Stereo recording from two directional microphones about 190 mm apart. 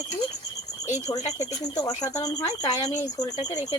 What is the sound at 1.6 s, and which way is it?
Speech, 20° left (ahead or behind).